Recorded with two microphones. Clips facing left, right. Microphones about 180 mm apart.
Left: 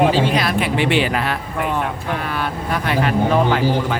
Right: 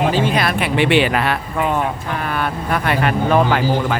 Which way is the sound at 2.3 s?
50° right (ahead or behind).